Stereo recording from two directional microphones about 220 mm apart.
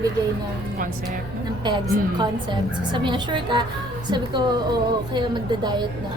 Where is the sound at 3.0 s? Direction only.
20° right (ahead or behind).